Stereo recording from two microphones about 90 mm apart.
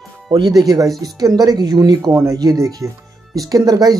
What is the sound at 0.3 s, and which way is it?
Speech, 50° right (ahead or behind).